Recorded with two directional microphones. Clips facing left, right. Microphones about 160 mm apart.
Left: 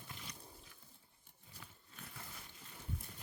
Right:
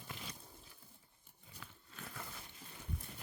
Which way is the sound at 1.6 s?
90° right.